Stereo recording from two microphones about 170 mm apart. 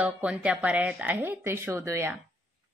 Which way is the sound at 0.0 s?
5° right (ahead or behind).